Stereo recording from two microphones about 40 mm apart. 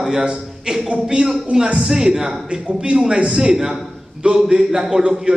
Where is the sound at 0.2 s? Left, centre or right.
Centre.